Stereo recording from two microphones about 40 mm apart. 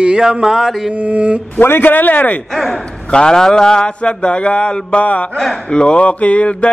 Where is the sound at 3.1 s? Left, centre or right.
Centre.